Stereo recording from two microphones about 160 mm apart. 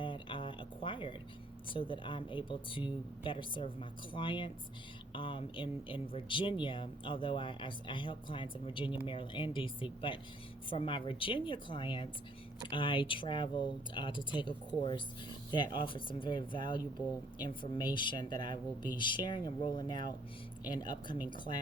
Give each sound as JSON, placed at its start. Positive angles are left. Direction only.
{"t": 0.0, "sound": "a sound", "side_deg": 30}
{"t": 1.6, "sound": "speech", "side_deg": 30}
{"t": 15.5, "sound": "speech", "side_deg": 30}